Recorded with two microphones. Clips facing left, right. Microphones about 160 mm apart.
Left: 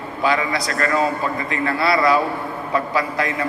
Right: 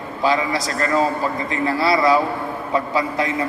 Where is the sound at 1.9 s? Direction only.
20° right (ahead or behind).